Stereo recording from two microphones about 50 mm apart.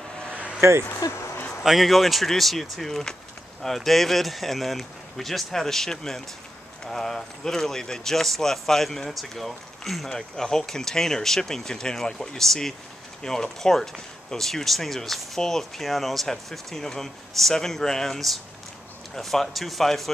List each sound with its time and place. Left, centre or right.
0.3 s vehicle: right
0.6 s speech: right
0.9 s speech: left
1.6 s speech: centre